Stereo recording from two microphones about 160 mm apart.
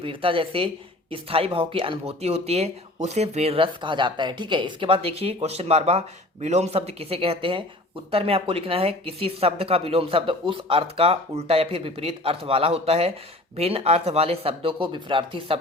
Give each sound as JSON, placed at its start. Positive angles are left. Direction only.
{"t": 0.0, "sound": "speech", "side_deg": -35}